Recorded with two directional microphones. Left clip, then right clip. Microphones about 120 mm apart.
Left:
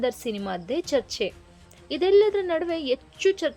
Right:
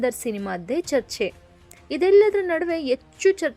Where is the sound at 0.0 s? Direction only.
30° right (ahead or behind).